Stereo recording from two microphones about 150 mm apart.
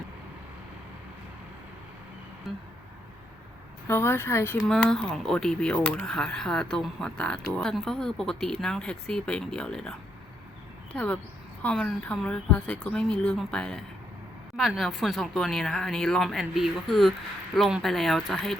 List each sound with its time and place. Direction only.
3.8 s speech: 15° left (ahead or behind)
4.7 s speech: 5° left (ahead or behind)
10.9 s speech: 10° left (ahead or behind)